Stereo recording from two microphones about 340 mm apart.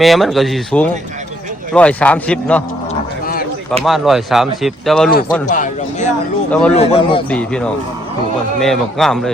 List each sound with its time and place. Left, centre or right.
0.0 s speech: centre
3.8 s speech: centre
5.3 s a man's voice: left
6.5 s speech: centre
6.7 s a man's voice: centre
7.3 s speech: centre